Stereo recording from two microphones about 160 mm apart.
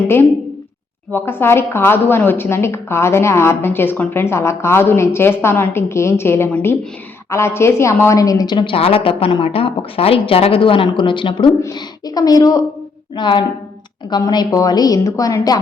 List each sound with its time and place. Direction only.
1.1 s a woman's voice: 15° left (ahead or behind)